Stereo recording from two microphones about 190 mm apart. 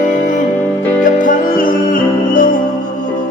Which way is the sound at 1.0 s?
45° left (ahead or behind).